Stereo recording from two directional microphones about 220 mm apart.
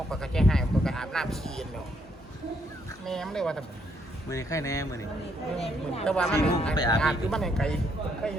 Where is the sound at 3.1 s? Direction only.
Centre (ahead or behind).